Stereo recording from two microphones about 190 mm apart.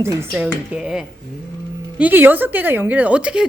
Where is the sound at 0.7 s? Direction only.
5° right (ahead or behind).